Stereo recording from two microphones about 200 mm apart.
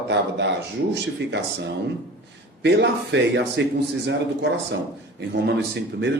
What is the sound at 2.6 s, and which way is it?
Speech, 60° right (ahead or behind).